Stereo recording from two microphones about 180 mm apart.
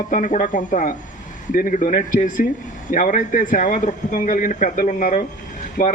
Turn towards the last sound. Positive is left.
turn(degrees=50)  # may be behind; listen again after turning